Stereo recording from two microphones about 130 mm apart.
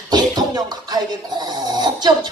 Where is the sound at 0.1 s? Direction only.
30° right (ahead or behind).